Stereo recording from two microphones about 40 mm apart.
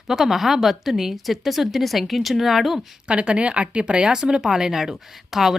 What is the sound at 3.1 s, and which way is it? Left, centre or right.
Speech, right.